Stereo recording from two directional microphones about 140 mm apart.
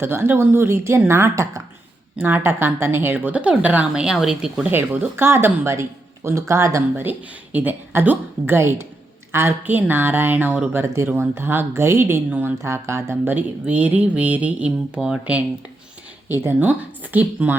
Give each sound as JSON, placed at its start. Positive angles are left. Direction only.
{"t": 0.0, "sound": "speech", "side_deg": -15}
{"t": 4.7, "sound": "speech", "side_deg": -15}